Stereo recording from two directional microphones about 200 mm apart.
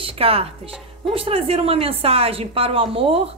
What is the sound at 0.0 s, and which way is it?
Music, 30° right (ahead or behind).